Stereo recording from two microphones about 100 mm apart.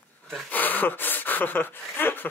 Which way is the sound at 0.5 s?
15° left (ahead or behind).